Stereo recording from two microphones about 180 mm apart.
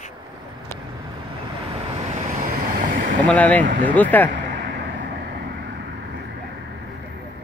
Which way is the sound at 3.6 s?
45° right (ahead or behind).